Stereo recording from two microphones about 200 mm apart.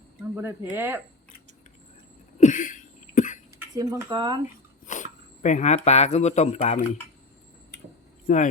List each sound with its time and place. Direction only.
0.3 s speech: 10° right (ahead or behind)
2.4 s cough: 40° left (ahead or behind)
3.8 s speech: 15° right (ahead or behind)
4.9 s speech: 40° left (ahead or behind)
8.3 s speech: 40° left (ahead or behind)